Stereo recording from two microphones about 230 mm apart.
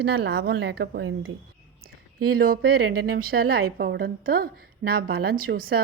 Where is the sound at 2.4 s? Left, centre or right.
Right.